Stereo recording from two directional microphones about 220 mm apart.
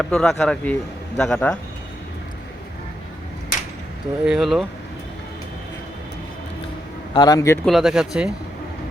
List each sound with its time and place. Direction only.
0.0 s a man's voice: centre (ahead or behind)
4.2 s a man's voice: centre (ahead or behind)
7.1 s a man's voice: 20° left (ahead or behind)
7.6 s a man's voice: centre (ahead or behind)